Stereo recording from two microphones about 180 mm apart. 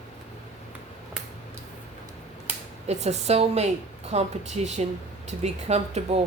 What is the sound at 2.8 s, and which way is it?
Speech, 35° right (ahead or behind).